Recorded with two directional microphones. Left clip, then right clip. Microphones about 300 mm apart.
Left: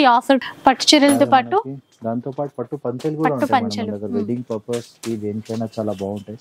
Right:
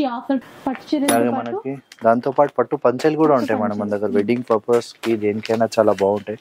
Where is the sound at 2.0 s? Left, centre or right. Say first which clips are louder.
Right 10 dB; centre.